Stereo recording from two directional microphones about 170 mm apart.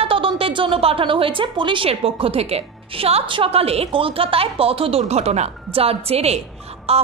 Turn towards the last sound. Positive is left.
turn(degrees=-35)  # may be behind; listen again after turning